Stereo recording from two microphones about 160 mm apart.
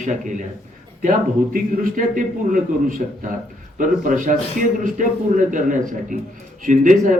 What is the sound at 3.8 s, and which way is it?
A man's voice, 55° right (ahead or behind).